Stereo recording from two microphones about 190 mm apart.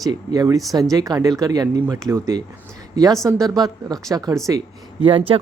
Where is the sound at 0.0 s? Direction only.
20° right (ahead or behind).